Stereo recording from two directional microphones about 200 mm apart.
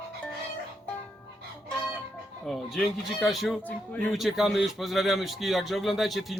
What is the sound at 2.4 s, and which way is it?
Speech, centre (ahead or behind).